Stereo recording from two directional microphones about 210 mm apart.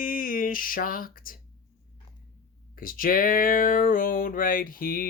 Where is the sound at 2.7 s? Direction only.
40° left (ahead or behind).